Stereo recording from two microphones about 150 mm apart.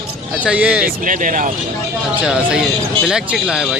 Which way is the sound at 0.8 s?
65° right (ahead or behind).